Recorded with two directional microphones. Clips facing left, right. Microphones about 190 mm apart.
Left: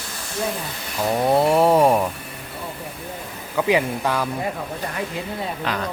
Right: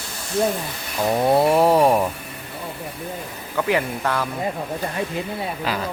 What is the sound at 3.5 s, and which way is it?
Speech, 10° left (ahead or behind).